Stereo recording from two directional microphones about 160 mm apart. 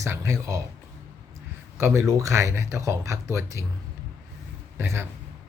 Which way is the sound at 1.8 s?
15° right (ahead or behind).